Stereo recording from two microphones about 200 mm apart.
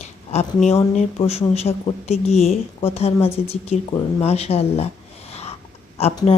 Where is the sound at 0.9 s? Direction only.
30° left (ahead or behind).